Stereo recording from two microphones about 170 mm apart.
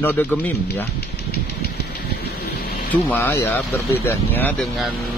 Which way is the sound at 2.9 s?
10° left (ahead or behind).